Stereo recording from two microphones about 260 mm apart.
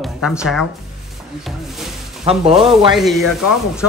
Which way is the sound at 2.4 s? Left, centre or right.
Right.